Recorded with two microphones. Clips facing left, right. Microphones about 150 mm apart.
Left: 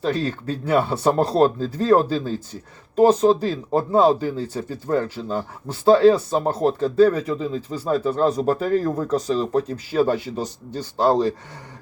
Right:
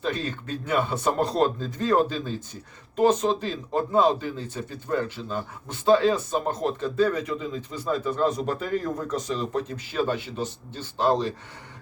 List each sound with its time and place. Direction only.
0.0 s speech: 35° left (ahead or behind)